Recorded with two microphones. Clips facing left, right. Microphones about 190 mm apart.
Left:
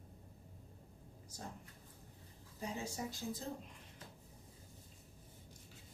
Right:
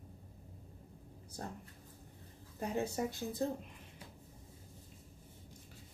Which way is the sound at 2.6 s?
60° right (ahead or behind).